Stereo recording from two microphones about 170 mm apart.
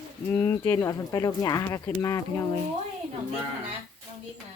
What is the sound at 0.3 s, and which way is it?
Speech, 15° left (ahead or behind).